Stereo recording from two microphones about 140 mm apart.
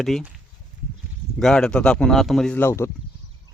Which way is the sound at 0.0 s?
5° left (ahead or behind).